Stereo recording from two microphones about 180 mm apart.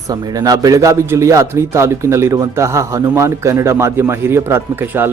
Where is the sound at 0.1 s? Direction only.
20° right (ahead or behind).